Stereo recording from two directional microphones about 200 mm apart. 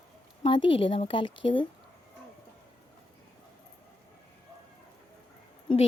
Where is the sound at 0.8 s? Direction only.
25° left (ahead or behind).